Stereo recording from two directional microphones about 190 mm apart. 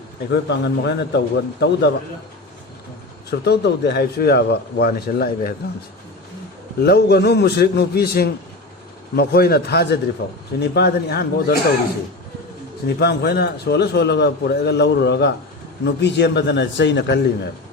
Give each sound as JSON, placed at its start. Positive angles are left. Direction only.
{"t": 0.3, "sound": "a man's voice", "side_deg": 65}
{"t": 3.2, "sound": "a man's voice", "side_deg": 60}
{"t": 6.8, "sound": "a man's voice", "side_deg": 55}
{"t": 10.6, "sound": "a man's voice", "side_deg": 60}
{"t": 13.0, "sound": "a man's voice", "side_deg": 60}